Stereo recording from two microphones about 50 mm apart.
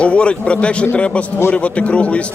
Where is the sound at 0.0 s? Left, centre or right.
Left.